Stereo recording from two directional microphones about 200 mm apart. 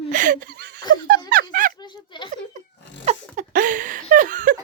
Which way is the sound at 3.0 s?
35° right (ahead or behind).